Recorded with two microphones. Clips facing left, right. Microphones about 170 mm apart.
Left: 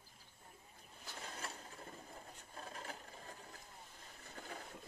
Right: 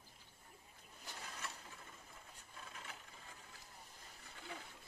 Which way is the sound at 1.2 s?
35° left (ahead or behind).